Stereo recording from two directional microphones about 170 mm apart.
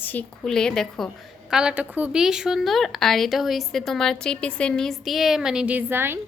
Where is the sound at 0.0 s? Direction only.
10° left (ahead or behind).